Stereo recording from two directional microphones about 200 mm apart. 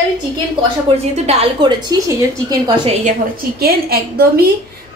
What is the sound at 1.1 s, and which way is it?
Speech, 30° right (ahead or behind).